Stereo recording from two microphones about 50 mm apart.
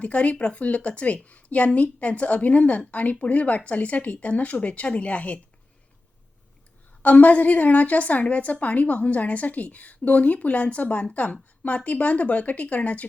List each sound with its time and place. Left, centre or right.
0.0 s speech: left
7.0 s speech: left